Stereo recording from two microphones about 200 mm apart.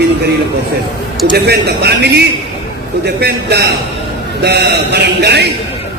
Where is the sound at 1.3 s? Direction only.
55° right (ahead or behind).